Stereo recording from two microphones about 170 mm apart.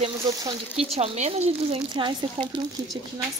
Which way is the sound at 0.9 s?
40° right (ahead or behind).